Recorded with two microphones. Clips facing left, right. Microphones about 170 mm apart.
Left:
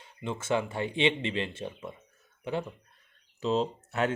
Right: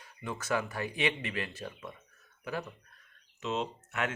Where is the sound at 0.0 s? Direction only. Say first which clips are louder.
Left 4 dB; 25° left (ahead or behind).